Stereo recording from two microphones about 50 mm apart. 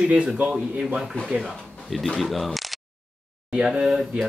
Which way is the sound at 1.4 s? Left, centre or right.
Centre.